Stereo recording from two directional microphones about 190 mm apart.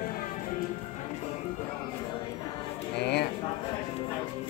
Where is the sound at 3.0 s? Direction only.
60° left (ahead or behind).